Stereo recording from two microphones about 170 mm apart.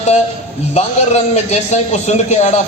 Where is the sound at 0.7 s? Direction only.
40° left (ahead or behind).